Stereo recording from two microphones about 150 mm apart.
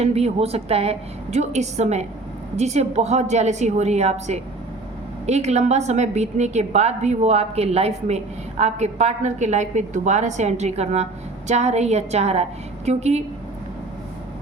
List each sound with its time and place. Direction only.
0.0 s a woman's voice: 45° right (ahead or behind)